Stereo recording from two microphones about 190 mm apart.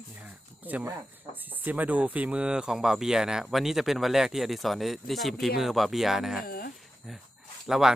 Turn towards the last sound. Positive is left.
turn(degrees=0)  # may be behind; listen again after turning